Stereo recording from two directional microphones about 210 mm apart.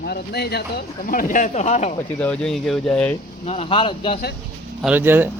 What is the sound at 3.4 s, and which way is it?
Speech, 30° left (ahead or behind).